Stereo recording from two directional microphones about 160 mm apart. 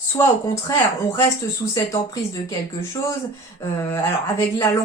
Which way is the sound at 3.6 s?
15° left (ahead or behind).